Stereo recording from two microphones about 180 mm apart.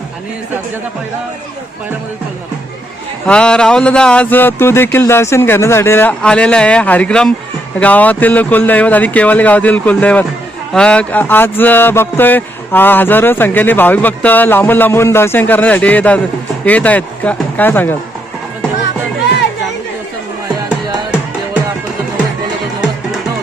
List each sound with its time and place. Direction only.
3.2 s speech: 5° left (ahead or behind)
20.7 s music: 5° right (ahead or behind)